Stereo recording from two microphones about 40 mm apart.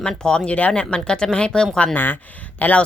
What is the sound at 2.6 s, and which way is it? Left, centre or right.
Speech, left.